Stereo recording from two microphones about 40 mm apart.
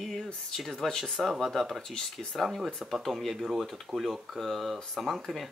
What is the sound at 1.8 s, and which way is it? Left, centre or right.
Speech, centre.